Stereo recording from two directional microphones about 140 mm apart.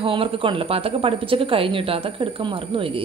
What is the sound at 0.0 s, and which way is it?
Speech, 40° right (ahead or behind).